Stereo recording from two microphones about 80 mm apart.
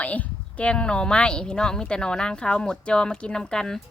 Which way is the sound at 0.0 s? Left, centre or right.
Centre.